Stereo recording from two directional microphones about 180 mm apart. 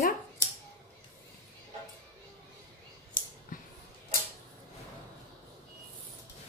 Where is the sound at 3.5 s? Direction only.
50° left (ahead or behind).